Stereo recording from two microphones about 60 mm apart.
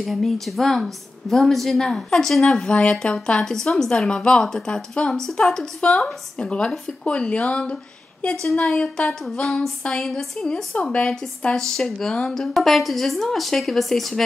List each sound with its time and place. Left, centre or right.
0.0 s a woman's voice: centre
9.2 s a woman's voice: centre